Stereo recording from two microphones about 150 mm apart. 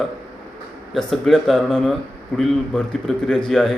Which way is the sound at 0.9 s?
Centre (ahead or behind).